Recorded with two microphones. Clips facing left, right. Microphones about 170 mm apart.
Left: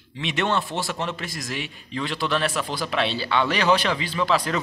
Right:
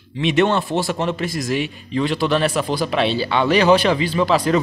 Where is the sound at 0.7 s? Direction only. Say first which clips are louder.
Right 8 dB; 45° right (ahead or behind).